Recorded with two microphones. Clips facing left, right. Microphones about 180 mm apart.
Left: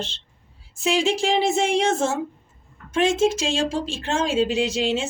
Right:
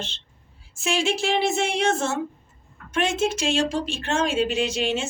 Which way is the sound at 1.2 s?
35° left (ahead or behind).